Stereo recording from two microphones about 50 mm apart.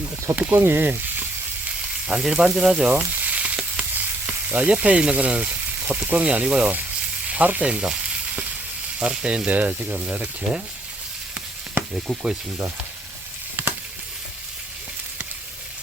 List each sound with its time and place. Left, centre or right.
0.3 s speech: right
0.6 s sizzle: right
2.0 s speech: centre
2.9 s frying: right
6.1 s speech: right
7.3 s sizzle: right
9.0 s speech: right
12.0 s speech: centre